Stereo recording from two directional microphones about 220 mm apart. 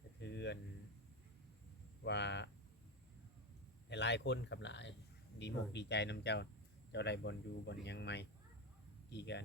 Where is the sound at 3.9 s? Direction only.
50° left (ahead or behind).